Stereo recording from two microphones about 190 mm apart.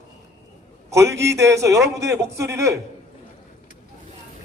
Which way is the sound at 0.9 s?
15° right (ahead or behind).